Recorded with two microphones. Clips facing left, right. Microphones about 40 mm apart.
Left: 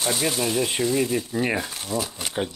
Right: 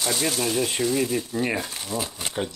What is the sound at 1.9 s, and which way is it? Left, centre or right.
Speech, centre.